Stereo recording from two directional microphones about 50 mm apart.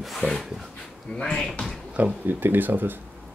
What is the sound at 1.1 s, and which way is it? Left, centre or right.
Speech, centre.